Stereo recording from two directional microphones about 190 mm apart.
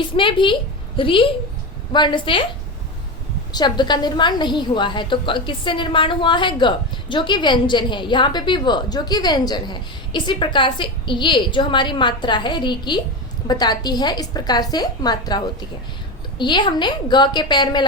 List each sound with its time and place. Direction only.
0.0 s a woman's voice: 25° left (ahead or behind)
3.5 s a woman's voice: 20° left (ahead or behind)